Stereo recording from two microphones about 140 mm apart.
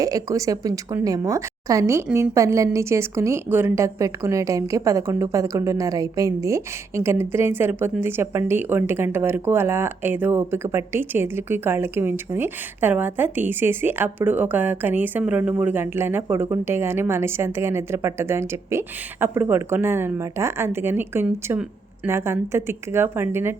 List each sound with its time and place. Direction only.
0.0 s a woman's voice: 25° right (ahead or behind)